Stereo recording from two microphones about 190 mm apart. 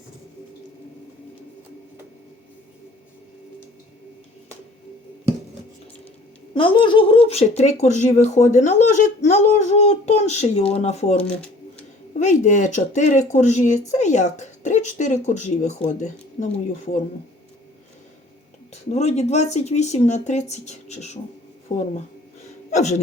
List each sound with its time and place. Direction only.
6.5 s speech: 25° left (ahead or behind)
18.7 s speech: 35° left (ahead or behind)